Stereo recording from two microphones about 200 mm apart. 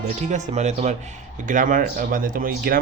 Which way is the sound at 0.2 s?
35° right (ahead or behind).